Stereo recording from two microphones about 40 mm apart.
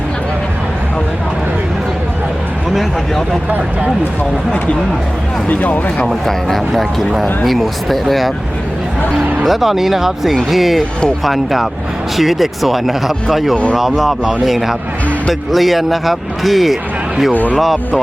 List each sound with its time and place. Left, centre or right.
5.5 s speech: left
6.1 s speech: centre
9.4 s speech: centre